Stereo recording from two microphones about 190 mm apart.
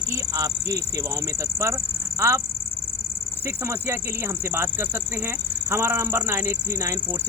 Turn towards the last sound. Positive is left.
turn(degrees=-15)  # may be behind; listen again after turning